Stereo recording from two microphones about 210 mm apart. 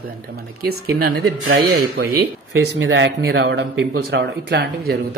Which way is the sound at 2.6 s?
60° right (ahead or behind).